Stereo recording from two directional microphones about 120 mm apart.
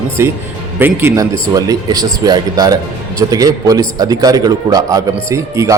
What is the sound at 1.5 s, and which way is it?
A man's voice, 30° right (ahead or behind).